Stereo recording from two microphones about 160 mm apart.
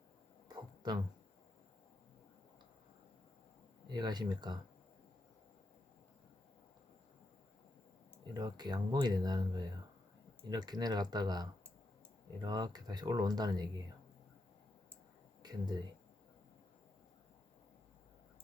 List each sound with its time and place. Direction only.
0.4 s music: 25° right (ahead or behind)
3.8 s speech: 25° right (ahead or behind)
8.3 s speech: 25° right (ahead or behind)
15.4 s speech: 25° right (ahead or behind)